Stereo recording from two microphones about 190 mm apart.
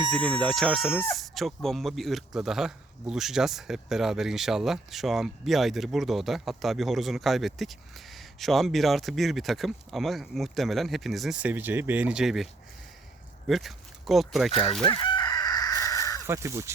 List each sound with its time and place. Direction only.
0.0 s speech: 5° left (ahead or behind)
13.5 s speech: centre (ahead or behind)
14.8 s chicken: 25° left (ahead or behind)
16.2 s speech: 15° right (ahead or behind)